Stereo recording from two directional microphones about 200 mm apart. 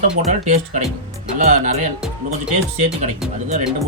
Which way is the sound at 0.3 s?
35° right (ahead or behind).